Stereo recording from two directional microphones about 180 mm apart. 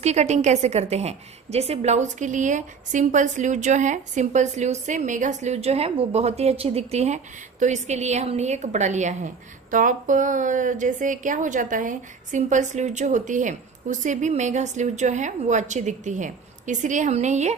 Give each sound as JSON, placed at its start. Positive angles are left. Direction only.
{"t": 0.0, "sound": "a woman's voice", "side_deg": -40}